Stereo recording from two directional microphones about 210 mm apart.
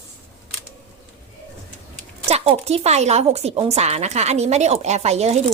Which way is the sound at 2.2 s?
30° right (ahead or behind).